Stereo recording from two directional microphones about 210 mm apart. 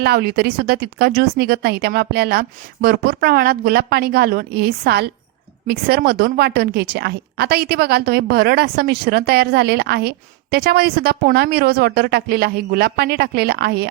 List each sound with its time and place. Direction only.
0.0 s a woman's voice: 50° right (ahead or behind)